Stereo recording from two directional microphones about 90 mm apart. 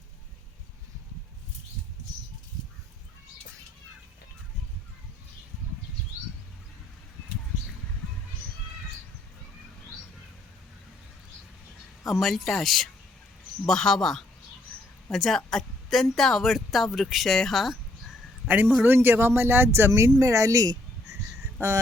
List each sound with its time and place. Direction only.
12.0 s a woman's voice: centre (ahead or behind)
18.4 s speech: 20° right (ahead or behind); by 21.2 s 40° right (ahead or behind)
21.6 s speech: 30° right (ahead or behind)